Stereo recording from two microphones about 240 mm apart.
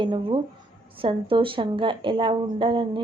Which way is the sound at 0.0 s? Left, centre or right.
Centre.